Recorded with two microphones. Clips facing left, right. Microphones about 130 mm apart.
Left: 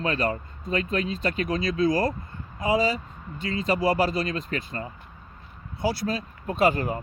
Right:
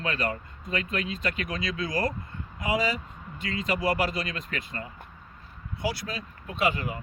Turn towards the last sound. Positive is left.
turn(degrees=40)  # may be behind; listen again after turning